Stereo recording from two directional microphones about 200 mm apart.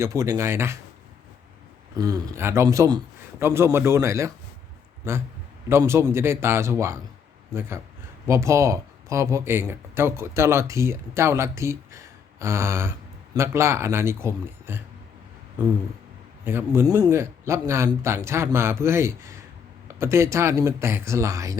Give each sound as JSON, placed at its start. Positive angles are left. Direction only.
{"t": 0.0, "sound": "speech", "side_deg": -15}
{"t": 2.0, "sound": "speech", "side_deg": -20}
{"t": 8.3, "sound": "speech", "side_deg": -15}
{"t": 16.4, "sound": "speech", "side_deg": -10}